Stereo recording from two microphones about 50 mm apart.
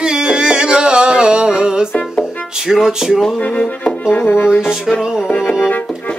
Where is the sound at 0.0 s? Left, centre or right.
Centre.